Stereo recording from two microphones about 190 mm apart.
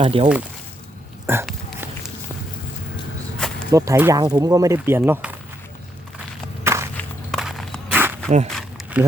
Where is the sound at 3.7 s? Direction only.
15° right (ahead or behind).